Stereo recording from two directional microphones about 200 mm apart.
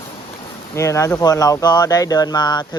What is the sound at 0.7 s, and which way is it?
Speech, 15° left (ahead or behind).